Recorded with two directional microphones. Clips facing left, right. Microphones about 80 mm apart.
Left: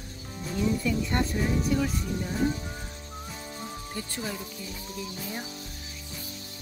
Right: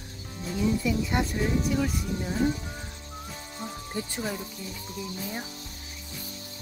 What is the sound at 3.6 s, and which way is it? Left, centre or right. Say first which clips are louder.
Music: right 5 dB; centre.